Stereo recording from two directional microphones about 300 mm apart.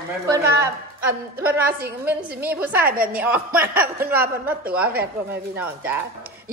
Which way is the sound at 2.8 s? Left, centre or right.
Right.